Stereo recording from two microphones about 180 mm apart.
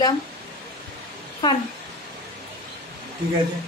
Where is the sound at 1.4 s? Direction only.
25° left (ahead or behind).